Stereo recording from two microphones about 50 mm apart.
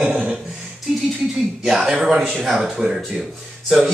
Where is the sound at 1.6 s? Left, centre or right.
Centre.